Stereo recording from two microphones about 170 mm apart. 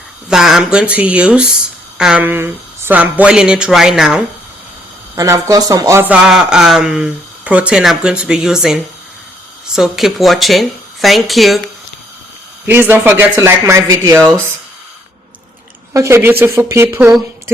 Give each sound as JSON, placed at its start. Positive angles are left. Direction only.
{"t": 0.3, "sound": "speech", "side_deg": -5}
{"t": 5.1, "sound": "speech", "side_deg": -20}
{"t": 12.6, "sound": "speech", "side_deg": -10}
{"t": 15.9, "sound": "speech", "side_deg": -15}